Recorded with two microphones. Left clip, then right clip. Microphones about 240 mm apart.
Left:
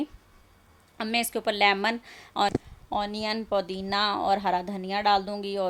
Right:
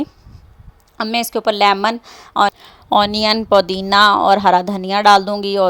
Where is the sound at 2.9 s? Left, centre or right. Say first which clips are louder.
Right 15 dB; right.